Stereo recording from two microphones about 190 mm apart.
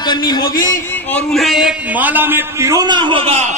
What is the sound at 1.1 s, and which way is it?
A man's voice, centre (ahead or behind).